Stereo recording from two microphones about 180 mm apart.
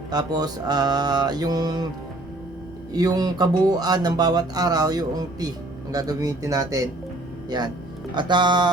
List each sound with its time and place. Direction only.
0.1 s speech: 20° right (ahead or behind)
2.9 s speech: 20° right (ahead or behind)
8.1 s speech: 25° right (ahead or behind)